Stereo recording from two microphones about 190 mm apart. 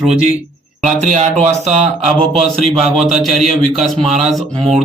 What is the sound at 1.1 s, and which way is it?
Speech, 40° right (ahead or behind).